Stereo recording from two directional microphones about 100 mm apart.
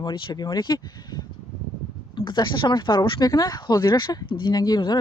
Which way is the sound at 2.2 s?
50° left (ahead or behind).